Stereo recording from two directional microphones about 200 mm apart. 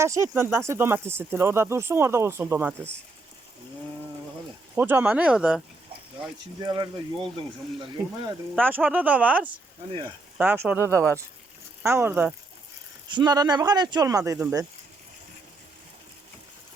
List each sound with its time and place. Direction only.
0.0 s speech: 15° right (ahead or behind)
4.7 s speech: 10° right (ahead or behind)
6.6 s speech: 20° right (ahead or behind)
8.6 s speech: 10° right (ahead or behind)
13.1 s speech: 20° right (ahead or behind)